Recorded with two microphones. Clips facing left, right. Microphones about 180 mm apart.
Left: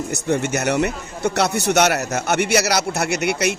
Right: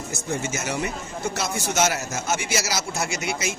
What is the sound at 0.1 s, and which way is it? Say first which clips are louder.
A man's voice: left 7 dB; 70° left (ahead or behind).